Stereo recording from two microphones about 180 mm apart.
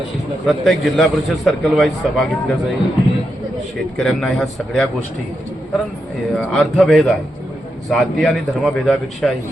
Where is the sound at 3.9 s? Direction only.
Centre (ahead or behind).